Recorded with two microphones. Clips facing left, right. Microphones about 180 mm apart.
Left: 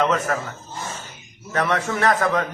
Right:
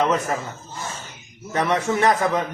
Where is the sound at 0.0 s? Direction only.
15° right (ahead or behind).